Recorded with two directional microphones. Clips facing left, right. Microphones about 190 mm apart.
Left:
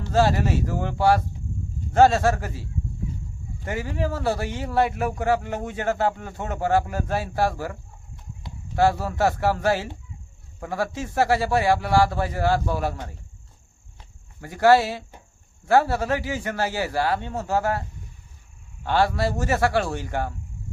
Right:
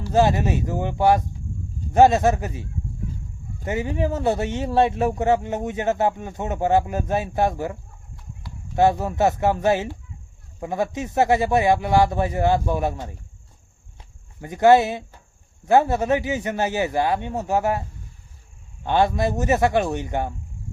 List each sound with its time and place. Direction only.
0.1 s a man's voice: 20° right (ahead or behind)
3.7 s a man's voice: 20° right (ahead or behind)
14.4 s a man's voice: 20° right (ahead or behind)